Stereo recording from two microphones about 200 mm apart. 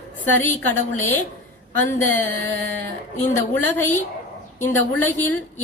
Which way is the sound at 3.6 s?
10° left (ahead or behind).